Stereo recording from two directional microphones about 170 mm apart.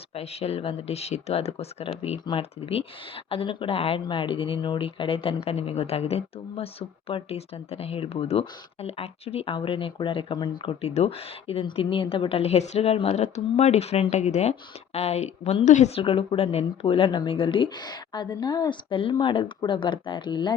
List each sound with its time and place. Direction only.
0.1 s speech: 35° left (ahead or behind)